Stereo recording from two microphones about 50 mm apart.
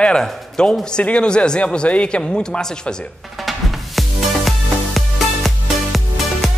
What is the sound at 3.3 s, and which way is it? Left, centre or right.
Music, centre.